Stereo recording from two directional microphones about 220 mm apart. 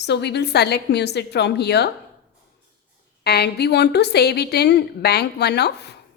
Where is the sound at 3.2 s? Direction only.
50° left (ahead or behind).